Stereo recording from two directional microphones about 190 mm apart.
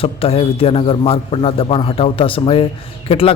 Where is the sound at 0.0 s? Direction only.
30° left (ahead or behind).